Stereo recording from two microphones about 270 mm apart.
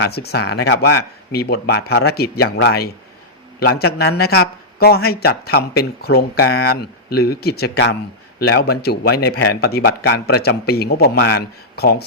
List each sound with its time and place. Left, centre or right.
0.0 s a man's voice: left